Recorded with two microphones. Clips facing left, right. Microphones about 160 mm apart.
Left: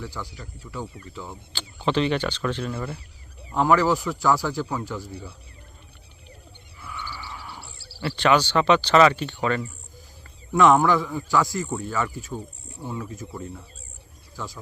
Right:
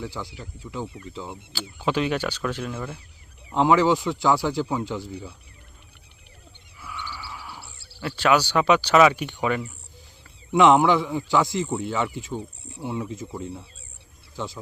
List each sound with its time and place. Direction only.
0.0 s a man's voice: 20° right (ahead or behind)
1.5 s speech: 10° right (ahead or behind)
3.5 s a man's voice: 20° right (ahead or behind)
7.0 s a sound: 10° right (ahead or behind)
8.0 s a man's voice: 5° right (ahead or behind); by 14.6 s 25° right (ahead or behind)